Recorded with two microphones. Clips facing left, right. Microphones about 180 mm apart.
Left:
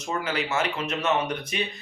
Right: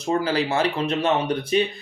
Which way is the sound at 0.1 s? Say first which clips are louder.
Right 6 dB; 35° right (ahead or behind).